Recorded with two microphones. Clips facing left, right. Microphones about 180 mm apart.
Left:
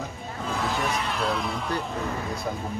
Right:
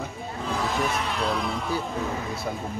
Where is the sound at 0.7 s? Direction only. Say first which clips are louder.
Right 1 dB; centre (ahead or behind).